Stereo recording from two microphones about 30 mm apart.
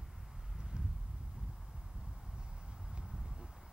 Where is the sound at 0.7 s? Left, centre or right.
Right.